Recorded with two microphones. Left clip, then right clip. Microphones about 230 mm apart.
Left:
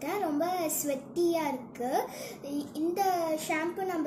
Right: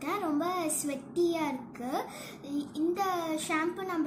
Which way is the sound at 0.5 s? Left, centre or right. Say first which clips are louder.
Left 1 dB; right.